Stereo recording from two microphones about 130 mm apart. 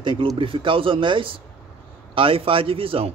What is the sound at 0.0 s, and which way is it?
A man's voice, 40° right (ahead or behind).